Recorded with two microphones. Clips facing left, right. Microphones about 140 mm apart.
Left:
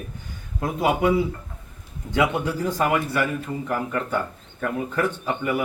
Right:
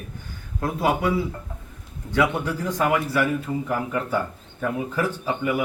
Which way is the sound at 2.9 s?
Centre (ahead or behind).